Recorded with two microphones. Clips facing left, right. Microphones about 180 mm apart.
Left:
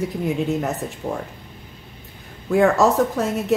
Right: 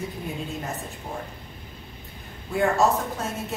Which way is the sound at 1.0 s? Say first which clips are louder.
Left 9 dB; 90° left.